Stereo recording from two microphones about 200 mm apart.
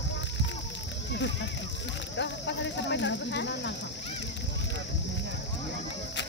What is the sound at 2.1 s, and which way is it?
Cricket, 60° left (ahead or behind).